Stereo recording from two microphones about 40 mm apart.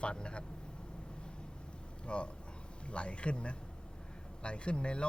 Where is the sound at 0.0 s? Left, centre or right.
Left.